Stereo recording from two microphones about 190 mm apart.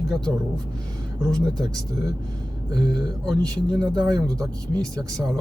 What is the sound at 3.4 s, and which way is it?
Speech, 5° left (ahead or behind).